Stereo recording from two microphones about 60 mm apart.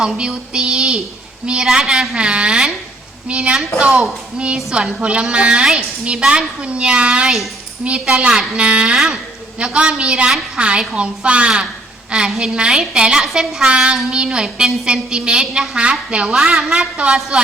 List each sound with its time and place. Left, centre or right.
0.0 s a woman's voice: centre